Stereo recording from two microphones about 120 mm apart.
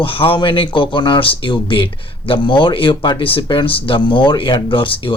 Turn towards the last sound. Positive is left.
turn(degrees=45)  # may be behind; listen again after turning